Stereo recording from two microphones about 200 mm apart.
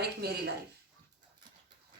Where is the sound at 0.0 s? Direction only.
55° right (ahead or behind).